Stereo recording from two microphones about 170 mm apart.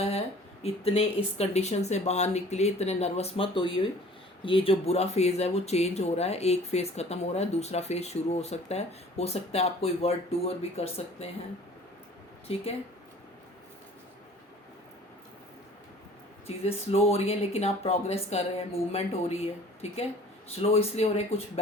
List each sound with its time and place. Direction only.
0.6 s speech: 35° left (ahead or behind)
12.5 s speech: 35° left (ahead or behind)
16.6 s speech: 35° left (ahead or behind)